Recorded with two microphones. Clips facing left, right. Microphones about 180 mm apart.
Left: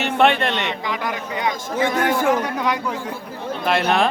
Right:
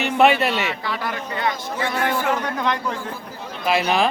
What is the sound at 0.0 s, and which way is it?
Speech, 5° right (ahead or behind).